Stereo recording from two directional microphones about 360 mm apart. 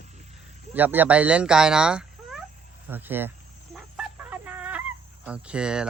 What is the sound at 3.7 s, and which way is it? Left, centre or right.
Chicken, centre.